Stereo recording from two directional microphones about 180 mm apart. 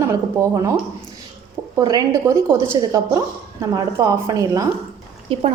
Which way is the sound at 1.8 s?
20° right (ahead or behind).